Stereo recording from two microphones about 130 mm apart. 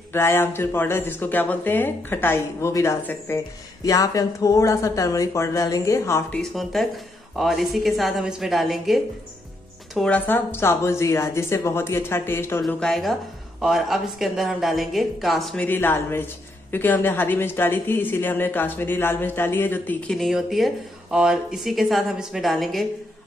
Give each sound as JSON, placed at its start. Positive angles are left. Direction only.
{"t": 0.1, "sound": "speech", "side_deg": 20}
{"t": 6.5, "sound": "speech", "side_deg": 0}
{"t": 9.9, "sound": "speech", "side_deg": 10}
{"t": 12.6, "sound": "speech", "side_deg": 5}
{"t": 15.6, "sound": "speech", "side_deg": 15}
{"t": 20.2, "sound": "speech", "side_deg": 0}